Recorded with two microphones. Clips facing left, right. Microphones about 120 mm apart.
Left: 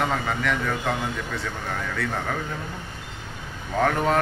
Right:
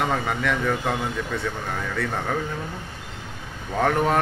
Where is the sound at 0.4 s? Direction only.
15° right (ahead or behind).